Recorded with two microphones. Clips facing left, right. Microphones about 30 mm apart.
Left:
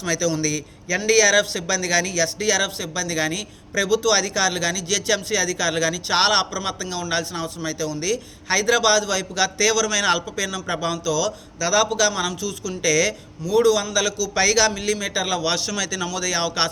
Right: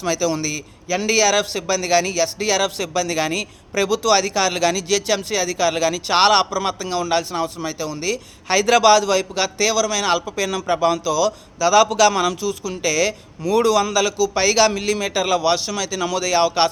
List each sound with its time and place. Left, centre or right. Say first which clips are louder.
0.0 s a man's voice: right 2 dB; right
2.6 s a man's voice: right 5 dB; right
4.9 s a man's voice: right 2 dB; right
8.5 s a man's voice: right 5 dB; right; by 10.3 s centre
10.3 s a man's voice: right 5 dB; right
11.9 s a man's voice: right 5 dB; right
12.4 s a man's voice: right 4 dB; right
12.8 s a man's voice: even; right
13.4 s a man's voice: right 1 dB; right
14.3 s a man's voice: right 1 dB; right
15.4 s a man's voice: right 4 dB; centre
16.0 s a man's voice: right 10 dB; right